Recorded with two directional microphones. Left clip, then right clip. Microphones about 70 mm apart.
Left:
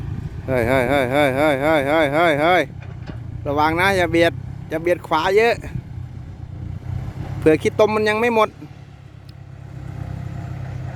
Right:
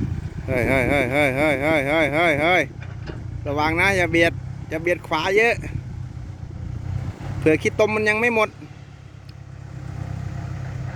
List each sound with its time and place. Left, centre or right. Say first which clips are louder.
0.4 s speech: left 2 dB; left
3.1 s vehicle: left 3 dB; left
5.0 s speech: left 2 dB; left
7.4 s speech: left 3 dB; left
10.2 s vehicle: left 1 dB; centre